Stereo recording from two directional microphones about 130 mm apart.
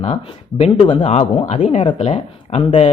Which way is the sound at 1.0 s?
55° left (ahead or behind).